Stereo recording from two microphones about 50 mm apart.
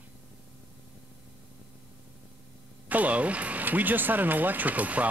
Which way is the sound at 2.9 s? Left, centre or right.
Right.